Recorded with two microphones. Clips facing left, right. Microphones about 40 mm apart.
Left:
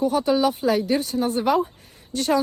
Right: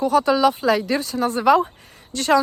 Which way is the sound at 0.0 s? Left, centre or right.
Right.